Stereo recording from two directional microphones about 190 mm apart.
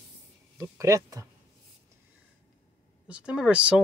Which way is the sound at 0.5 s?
15° right (ahead or behind).